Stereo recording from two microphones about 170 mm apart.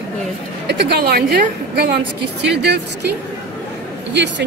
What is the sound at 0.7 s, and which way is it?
A woman's voice, 75° right (ahead or behind).